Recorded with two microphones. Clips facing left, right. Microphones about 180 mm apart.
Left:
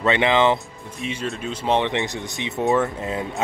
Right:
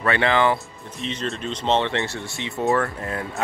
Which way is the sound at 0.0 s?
20° left (ahead or behind).